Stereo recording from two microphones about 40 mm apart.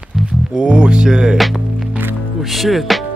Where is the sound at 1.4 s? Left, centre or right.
Centre.